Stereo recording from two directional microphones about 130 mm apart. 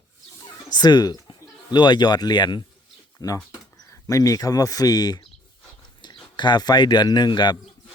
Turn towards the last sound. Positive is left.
turn(degrees=35)  # may be behind; listen again after turning